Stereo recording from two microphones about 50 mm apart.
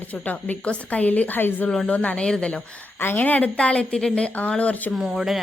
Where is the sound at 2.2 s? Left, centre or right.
Centre.